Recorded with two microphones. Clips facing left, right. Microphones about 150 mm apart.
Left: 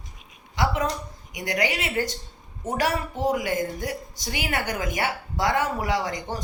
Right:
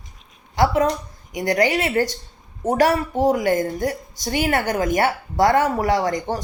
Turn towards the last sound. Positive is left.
turn(degrees=-45)  # may be behind; listen again after turning